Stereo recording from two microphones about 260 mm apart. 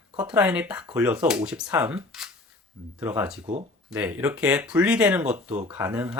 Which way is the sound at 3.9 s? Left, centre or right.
Centre.